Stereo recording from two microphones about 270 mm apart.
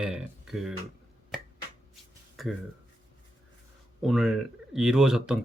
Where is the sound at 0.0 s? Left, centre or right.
Centre.